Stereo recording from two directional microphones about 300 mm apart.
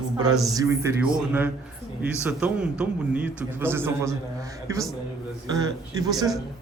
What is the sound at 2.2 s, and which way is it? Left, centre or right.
A man's voice, centre.